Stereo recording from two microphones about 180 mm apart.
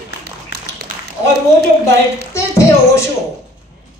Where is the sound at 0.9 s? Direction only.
70° left (ahead or behind).